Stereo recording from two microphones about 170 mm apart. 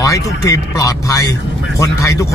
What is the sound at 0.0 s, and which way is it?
Speech, 20° left (ahead or behind).